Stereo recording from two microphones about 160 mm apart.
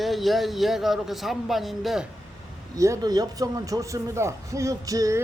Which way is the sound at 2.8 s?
20° right (ahead or behind).